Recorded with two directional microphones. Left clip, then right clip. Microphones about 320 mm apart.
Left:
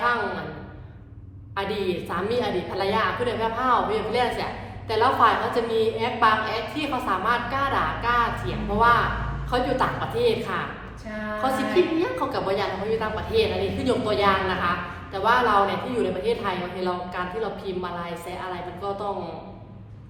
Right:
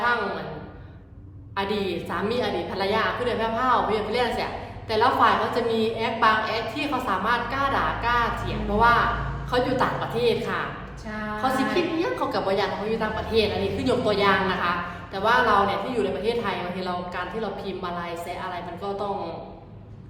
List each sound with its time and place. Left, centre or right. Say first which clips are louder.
1.5 s a woman's voice: even; centre